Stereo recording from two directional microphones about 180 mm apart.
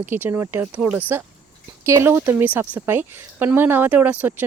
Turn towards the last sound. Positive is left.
turn(degrees=-10)  # may be behind; listen again after turning